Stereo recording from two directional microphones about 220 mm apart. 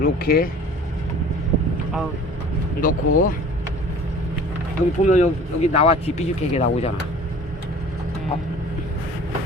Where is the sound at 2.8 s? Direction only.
40° left (ahead or behind).